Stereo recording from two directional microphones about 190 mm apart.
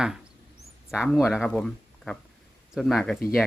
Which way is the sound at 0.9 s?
Centre (ahead or behind).